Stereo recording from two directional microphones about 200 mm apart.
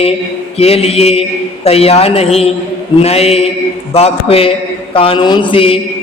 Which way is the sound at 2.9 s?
30° left (ahead or behind).